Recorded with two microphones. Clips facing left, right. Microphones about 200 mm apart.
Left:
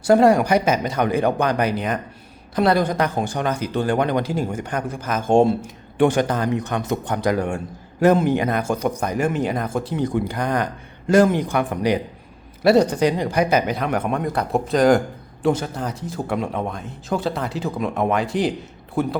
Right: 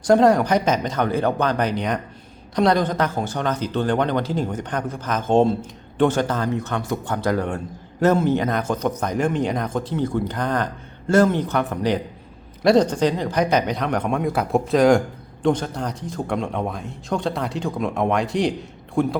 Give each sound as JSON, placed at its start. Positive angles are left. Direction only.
{"t": 0.0, "sound": "a man's voice", "side_deg": 10}